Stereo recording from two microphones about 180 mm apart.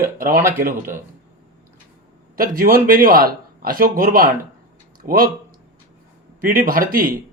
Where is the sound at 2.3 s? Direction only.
50° right (ahead or behind).